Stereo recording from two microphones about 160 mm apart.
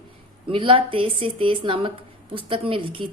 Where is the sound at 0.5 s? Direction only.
35° right (ahead or behind).